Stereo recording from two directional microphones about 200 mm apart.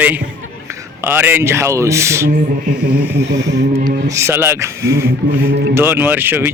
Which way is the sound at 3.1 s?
60° right (ahead or behind).